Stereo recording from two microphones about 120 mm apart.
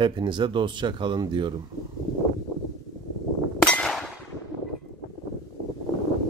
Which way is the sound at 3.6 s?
5° left (ahead or behind).